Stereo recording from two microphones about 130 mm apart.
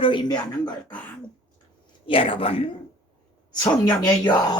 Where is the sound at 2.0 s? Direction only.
45° left (ahead or behind).